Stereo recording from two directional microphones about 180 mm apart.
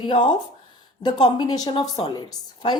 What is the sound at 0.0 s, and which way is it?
A woman's voice, 25° left (ahead or behind).